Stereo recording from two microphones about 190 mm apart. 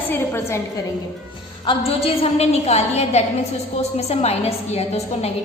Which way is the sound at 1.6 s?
30° left (ahead or behind).